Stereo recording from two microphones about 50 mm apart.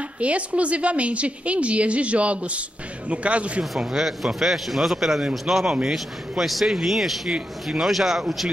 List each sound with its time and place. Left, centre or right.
0.2 s a woman's voice: right
3.8 s speech: centre